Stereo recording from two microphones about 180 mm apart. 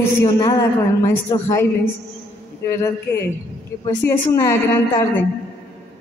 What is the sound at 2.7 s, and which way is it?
A woman's voice, 15° left (ahead or behind).